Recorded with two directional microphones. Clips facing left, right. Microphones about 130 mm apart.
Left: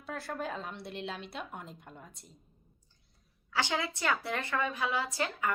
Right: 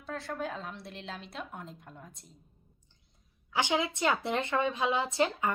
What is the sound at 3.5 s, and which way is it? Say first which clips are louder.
A woman's voice: right 3 dB; 20° right (ahead or behind).